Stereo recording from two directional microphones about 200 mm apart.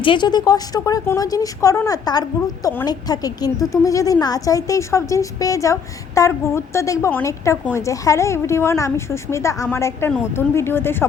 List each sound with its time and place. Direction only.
0.0 s a woman's voice: 25° left (ahead or behind)